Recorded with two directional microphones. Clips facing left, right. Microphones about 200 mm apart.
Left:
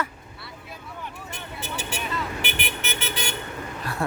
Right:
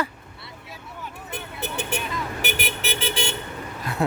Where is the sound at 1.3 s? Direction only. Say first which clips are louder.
Right 6 dB; 60° right (ahead or behind).